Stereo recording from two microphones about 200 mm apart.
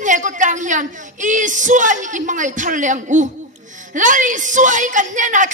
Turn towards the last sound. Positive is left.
turn(degrees=-40)  # may be behind; listen again after turning